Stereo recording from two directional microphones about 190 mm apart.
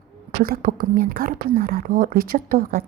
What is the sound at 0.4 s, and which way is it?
Speech, 50° right (ahead or behind).